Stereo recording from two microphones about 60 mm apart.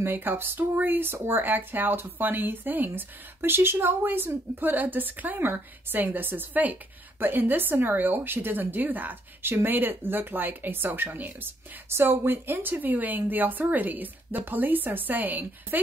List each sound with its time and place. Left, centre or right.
0.0 s speech: right